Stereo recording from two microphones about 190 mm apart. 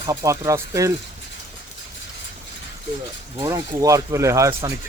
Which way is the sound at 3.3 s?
20° right (ahead or behind).